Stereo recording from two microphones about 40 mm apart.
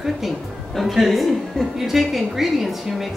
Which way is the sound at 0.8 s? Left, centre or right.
Centre.